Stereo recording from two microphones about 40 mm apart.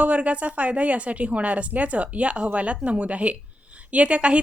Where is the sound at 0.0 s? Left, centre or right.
Right.